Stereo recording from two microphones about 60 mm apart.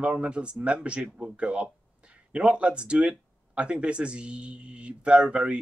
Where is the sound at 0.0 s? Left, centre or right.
Centre.